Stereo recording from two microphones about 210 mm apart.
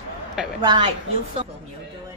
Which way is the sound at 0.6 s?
25° right (ahead or behind).